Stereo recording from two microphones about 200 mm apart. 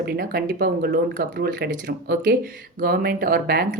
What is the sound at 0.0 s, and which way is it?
Speech, 50° right (ahead or behind).